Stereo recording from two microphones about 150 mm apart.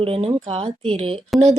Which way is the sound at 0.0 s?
40° right (ahead or behind).